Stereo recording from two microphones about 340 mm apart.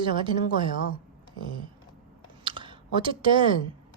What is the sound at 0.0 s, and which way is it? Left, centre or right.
Speech, centre.